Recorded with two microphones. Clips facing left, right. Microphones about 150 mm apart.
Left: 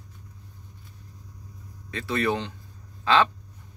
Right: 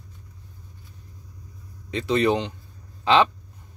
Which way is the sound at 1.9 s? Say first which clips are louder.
Right 5 dB; 20° right (ahead or behind).